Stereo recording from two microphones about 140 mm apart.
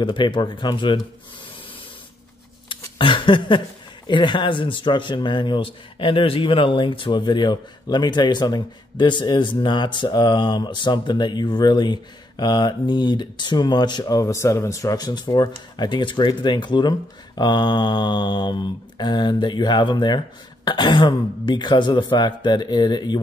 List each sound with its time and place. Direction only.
0.0 s a man's voice: 35° left (ahead or behind)
2.7 s a sound: 35° left (ahead or behind)
4.1 s a man's voice: 35° left (ahead or behind)